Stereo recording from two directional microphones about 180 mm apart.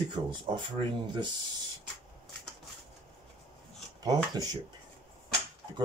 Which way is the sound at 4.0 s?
20° right (ahead or behind).